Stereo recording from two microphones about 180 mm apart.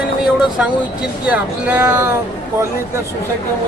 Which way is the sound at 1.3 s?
10° right (ahead or behind).